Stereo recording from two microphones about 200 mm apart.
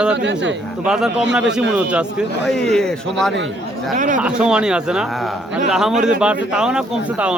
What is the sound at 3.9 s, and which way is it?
Speech, 40° right (ahead or behind).